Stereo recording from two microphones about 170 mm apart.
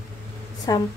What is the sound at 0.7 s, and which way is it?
Speech, 20° left (ahead or behind).